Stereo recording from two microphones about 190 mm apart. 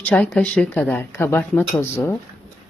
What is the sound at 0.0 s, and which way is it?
Speech, 5° left (ahead or behind).